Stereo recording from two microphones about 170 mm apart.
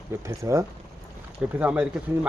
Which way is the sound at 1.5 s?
5° right (ahead or behind).